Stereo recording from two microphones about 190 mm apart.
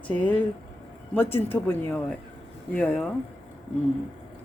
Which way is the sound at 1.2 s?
10° left (ahead or behind).